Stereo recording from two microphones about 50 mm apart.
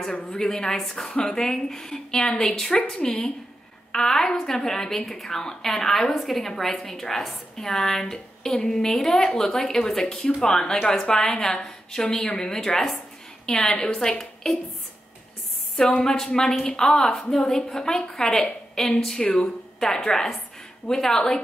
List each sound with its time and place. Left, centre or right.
0.0 s a woman's voice: centre
15.9 s a woman's voice: centre